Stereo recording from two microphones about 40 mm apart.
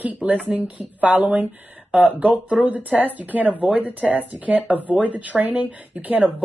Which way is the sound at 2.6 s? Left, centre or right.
Right.